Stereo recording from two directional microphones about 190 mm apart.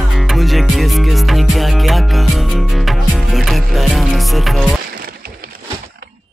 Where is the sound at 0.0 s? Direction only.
Centre (ahead or behind).